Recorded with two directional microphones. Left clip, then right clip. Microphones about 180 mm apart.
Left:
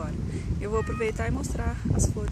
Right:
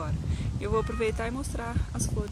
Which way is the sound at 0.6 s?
5° right (ahead or behind).